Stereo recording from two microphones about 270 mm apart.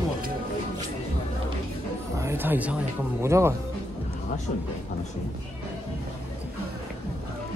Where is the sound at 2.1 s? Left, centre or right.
Centre.